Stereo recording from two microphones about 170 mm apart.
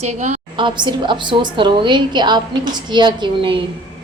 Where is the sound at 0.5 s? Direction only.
25° right (ahead or behind).